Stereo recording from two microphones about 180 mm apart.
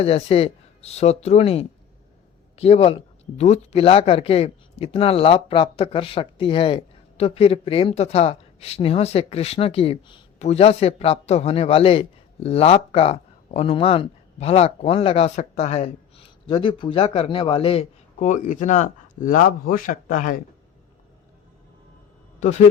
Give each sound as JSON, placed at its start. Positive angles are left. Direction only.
{"t": 0.0, "sound": "speech", "side_deg": 35}
{"t": 22.4, "sound": "speech", "side_deg": 40}